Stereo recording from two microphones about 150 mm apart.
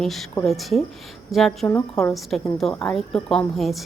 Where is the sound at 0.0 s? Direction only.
Centre (ahead or behind).